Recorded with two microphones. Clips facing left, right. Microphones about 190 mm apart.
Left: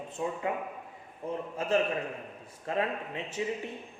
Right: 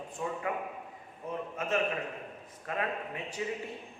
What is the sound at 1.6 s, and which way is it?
A man's voice, 30° left (ahead or behind).